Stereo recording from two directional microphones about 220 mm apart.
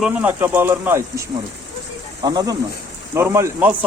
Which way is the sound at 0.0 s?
5° right (ahead or behind).